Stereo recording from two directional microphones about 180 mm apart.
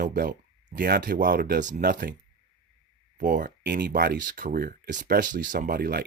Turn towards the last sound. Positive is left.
turn(degrees=-55)  # may be behind; listen again after turning